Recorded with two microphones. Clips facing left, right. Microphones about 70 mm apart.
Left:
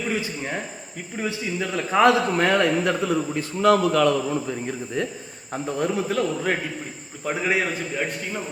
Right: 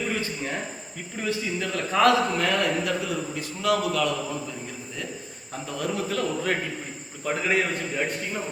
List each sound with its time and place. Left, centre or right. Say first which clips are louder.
0.1 s a sound: left 2 dB; centre
1.2 s a man's voice: left 1 dB; centre
2.4 s a man's voice: left 5 dB; left
5.6 s a man's voice: left 5 dB; left; by 8.4 s centre